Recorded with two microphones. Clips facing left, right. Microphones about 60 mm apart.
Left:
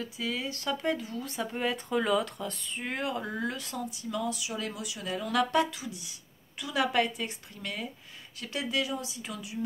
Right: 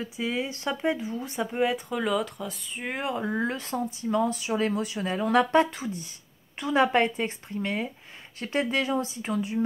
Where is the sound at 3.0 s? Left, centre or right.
Right.